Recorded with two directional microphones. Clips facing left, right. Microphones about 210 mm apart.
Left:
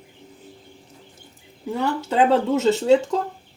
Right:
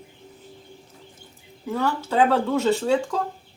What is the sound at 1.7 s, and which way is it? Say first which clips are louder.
Speech: left 1 dB; 20° left (ahead or behind).